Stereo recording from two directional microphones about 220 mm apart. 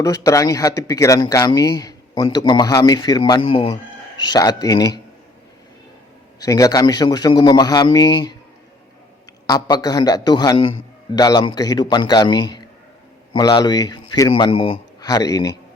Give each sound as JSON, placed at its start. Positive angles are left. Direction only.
{"t": 0.0, "sound": "a man's voice", "side_deg": 15}
{"t": 6.4, "sound": "a man's voice", "side_deg": 15}
{"t": 9.5, "sound": "a man's voice", "side_deg": 20}